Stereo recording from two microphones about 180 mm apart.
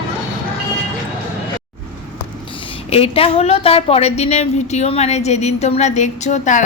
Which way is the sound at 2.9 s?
35° left (ahead or behind).